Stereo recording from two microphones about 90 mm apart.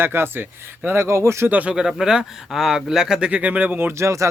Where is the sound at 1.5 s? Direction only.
15° right (ahead or behind).